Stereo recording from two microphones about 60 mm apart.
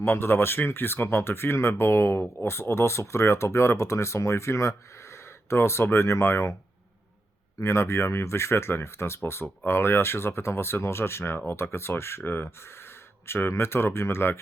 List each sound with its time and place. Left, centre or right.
0.0 s speech: left
5.5 s speech: left
7.6 s speech: left